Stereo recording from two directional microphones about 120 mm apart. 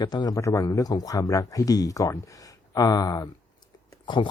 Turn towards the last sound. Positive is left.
turn(degrees=40)  # may be behind; listen again after turning